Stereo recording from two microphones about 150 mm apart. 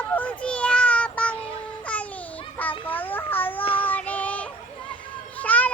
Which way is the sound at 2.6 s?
10° left (ahead or behind).